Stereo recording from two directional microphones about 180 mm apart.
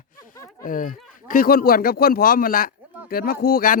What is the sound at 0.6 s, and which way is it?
Speech, 50° left (ahead or behind).